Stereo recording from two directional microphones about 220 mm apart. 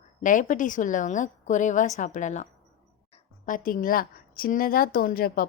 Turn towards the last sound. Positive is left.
turn(degrees=40)  # may be behind; listen again after turning